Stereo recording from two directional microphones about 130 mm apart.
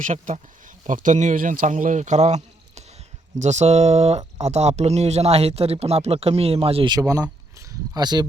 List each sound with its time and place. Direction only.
0.0 s a man's voice: 75° right (ahead or behind); by 6.9 s 45° right (ahead or behind)
6.9 s speech: 25° right (ahead or behind)